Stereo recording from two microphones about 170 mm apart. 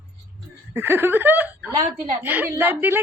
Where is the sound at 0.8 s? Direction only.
10° right (ahead or behind).